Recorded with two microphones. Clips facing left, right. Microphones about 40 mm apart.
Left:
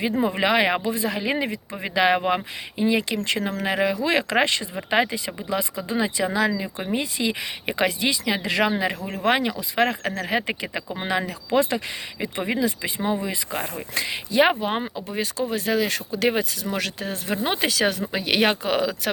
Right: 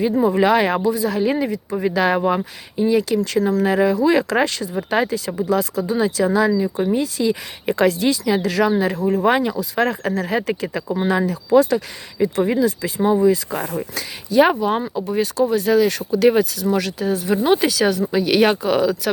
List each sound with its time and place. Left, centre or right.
0.0 s speech: left
6.5 s speech: left
7.7 s speech: left
14.3 s speech: centre
16.7 s speech: left
17.3 s speech: centre
18.2 s speech: centre